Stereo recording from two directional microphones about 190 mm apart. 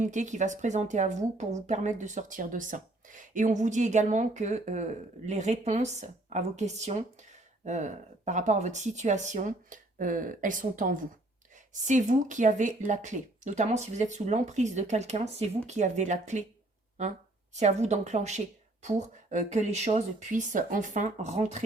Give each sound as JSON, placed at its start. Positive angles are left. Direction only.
{"t": 0.0, "sound": "speech", "side_deg": -40}
{"t": 17.5, "sound": "speech", "side_deg": -35}